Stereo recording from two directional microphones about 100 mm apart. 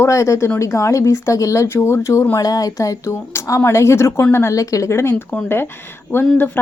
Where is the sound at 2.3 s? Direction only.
40° left (ahead or behind).